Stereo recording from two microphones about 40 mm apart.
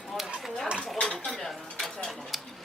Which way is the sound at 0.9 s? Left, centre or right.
Left.